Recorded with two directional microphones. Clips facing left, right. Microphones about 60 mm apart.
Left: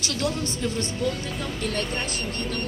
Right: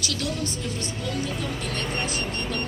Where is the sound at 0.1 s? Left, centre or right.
Left.